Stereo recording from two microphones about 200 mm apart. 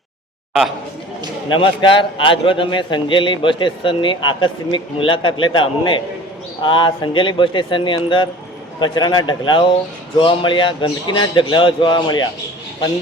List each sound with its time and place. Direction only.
1.5 s a man's voice: 25° left (ahead or behind)